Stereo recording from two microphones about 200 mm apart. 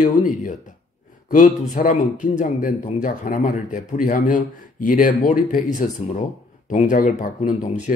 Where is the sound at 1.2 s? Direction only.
40° left (ahead or behind).